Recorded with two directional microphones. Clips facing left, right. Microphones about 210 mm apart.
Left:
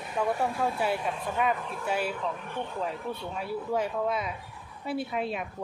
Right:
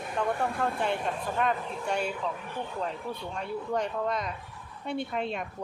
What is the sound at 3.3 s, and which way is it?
Speech, 5° left (ahead or behind).